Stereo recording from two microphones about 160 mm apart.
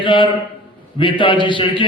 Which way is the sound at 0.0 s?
30° left (ahead or behind).